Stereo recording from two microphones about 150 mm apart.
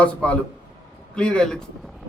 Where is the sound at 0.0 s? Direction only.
10° left (ahead or behind).